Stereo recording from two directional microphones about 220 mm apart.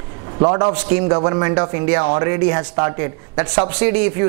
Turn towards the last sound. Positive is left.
turn(degrees=-15)  # may be behind; listen again after turning